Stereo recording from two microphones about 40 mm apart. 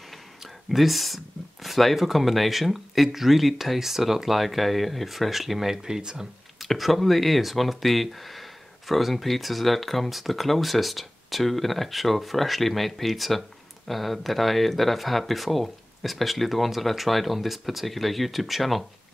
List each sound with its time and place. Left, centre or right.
0.4 s speech: centre
6.6 s speech: centre